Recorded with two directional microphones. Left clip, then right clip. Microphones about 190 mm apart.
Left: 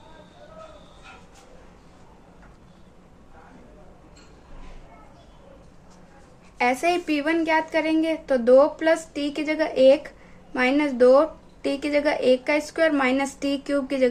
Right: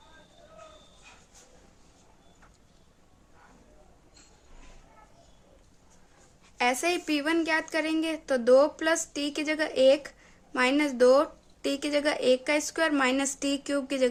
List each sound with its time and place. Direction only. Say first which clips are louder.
6.6 s a woman's voice: left 5 dB; 35° right (ahead or behind)